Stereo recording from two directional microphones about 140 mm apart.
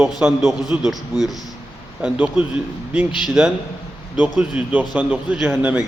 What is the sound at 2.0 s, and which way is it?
Speech, 10° right (ahead or behind).